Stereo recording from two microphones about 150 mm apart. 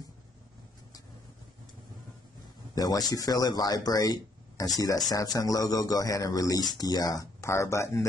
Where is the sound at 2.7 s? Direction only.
25° left (ahead or behind).